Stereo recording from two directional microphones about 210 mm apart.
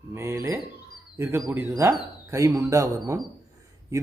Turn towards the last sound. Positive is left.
turn(degrees=-15)  # may be behind; listen again after turning